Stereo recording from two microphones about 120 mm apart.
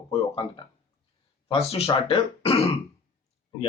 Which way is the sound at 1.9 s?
40° left (ahead or behind).